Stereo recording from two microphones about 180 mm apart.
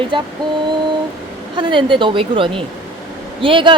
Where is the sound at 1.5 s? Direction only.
25° right (ahead or behind).